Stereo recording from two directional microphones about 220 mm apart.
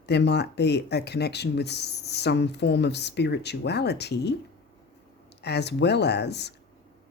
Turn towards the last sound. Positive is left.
turn(degrees=50)  # may be behind; listen again after turning